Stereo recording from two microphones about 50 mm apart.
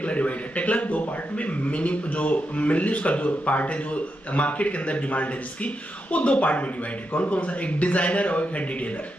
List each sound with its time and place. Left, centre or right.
0.0 s a man's voice: left